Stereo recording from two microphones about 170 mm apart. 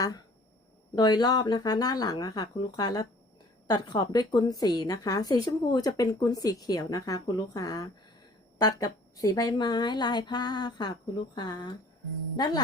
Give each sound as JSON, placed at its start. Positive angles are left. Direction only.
{"t": 0.9, "sound": "a woman's voice", "side_deg": 25}